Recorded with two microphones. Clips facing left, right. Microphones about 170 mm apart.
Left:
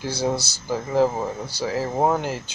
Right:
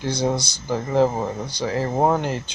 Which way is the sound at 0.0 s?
5° left (ahead or behind).